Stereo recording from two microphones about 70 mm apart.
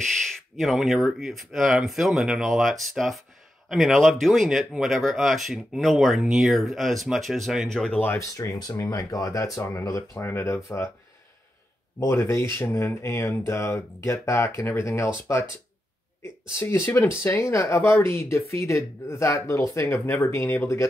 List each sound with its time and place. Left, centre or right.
0.6 s speech: centre
8.2 s speech: left
12.0 s speech: left